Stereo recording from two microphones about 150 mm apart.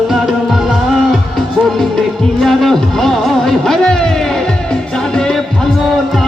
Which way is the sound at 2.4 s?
Centre (ahead or behind).